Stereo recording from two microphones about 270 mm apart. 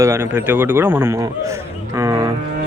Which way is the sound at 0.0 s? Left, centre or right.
Centre.